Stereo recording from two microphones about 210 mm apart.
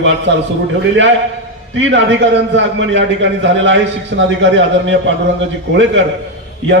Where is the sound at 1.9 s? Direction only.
60° right (ahead or behind).